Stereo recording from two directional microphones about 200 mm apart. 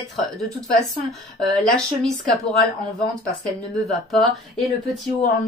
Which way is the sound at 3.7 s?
Centre (ahead or behind).